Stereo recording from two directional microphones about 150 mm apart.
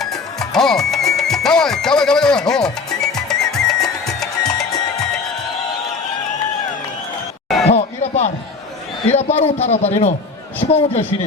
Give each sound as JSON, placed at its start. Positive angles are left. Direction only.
{"t": 0.0, "sound": "music", "side_deg": 5}
{"t": 7.7, "sound": "a sound", "side_deg": 45}
{"t": 9.0, "sound": "a man's voice", "side_deg": 45}